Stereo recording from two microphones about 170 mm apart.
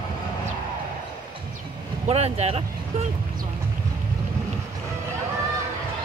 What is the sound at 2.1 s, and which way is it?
Speech, 40° right (ahead or behind).